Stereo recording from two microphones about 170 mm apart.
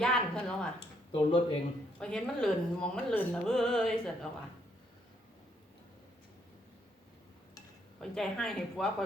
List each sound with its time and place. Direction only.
0.0 s a sound: 5° left (ahead or behind)
1.1 s speech: 30° left (ahead or behind)
2.0 s speech: 5° left (ahead or behind)
8.1 s speech: centre (ahead or behind)